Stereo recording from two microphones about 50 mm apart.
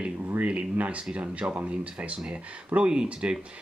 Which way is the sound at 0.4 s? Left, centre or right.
Right.